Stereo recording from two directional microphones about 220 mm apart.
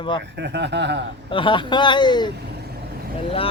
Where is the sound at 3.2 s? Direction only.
25° left (ahead or behind).